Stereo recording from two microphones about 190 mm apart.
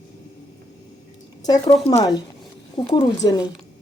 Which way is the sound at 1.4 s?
20° left (ahead or behind).